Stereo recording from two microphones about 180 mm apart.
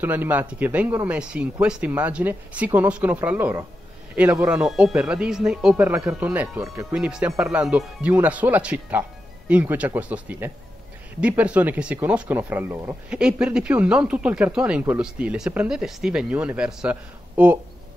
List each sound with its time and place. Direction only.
0.0 s speech: 10° right (ahead or behind)
4.6 s speech: 5° right (ahead or behind)